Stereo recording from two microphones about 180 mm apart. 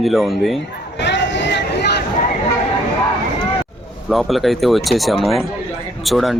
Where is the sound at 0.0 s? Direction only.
Centre (ahead or behind).